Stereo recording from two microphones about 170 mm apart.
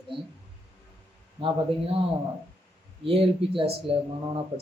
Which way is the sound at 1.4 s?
35° right (ahead or behind).